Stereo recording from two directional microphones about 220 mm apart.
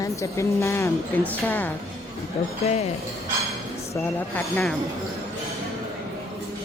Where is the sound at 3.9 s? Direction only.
10° left (ahead or behind).